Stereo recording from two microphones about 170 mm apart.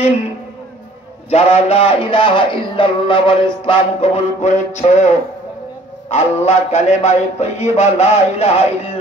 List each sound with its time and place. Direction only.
1.3 s music: 40° left (ahead or behind)